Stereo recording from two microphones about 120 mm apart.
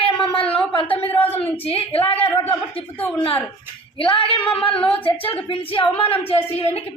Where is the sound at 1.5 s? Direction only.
50° left (ahead or behind).